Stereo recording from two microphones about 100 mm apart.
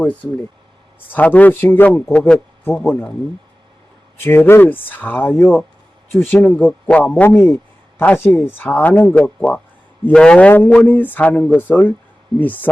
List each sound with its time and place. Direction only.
0.0 s speech: 15° left (ahead or behind)
4.2 s speech: 20° left (ahead or behind)